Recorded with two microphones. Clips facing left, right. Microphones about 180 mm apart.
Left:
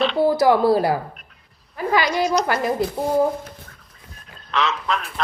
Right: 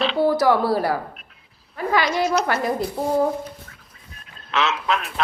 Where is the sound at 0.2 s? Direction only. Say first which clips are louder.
Left 1 dB; 15° left (ahead or behind).